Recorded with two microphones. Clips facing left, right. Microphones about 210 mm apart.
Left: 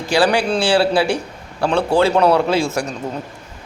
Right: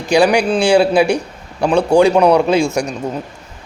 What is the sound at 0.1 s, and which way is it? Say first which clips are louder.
A man's voice: right 4 dB; 15° right (ahead or behind).